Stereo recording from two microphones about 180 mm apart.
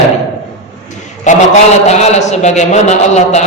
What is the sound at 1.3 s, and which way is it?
A man's voice, 40° left (ahead or behind).